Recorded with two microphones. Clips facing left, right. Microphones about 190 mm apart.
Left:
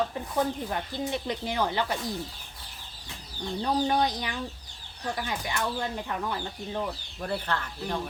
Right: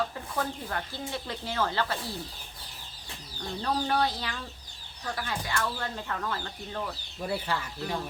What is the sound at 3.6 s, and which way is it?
Speech, 15° left (ahead or behind).